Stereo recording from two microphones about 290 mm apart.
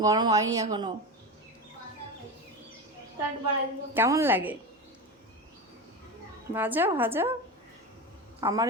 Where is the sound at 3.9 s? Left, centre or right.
Centre.